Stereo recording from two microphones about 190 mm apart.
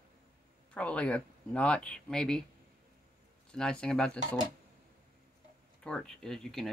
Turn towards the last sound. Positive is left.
turn(degrees=0)  # may be behind; listen again after turning